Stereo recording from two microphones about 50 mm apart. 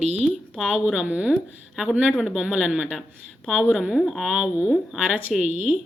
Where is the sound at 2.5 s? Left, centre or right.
Centre.